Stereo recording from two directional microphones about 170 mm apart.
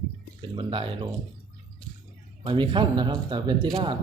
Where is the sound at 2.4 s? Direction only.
25° right (ahead or behind).